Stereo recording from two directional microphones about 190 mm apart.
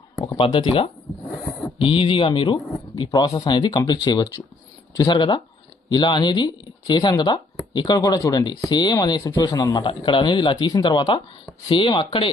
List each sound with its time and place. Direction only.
0.3 s speech: 30° left (ahead or behind)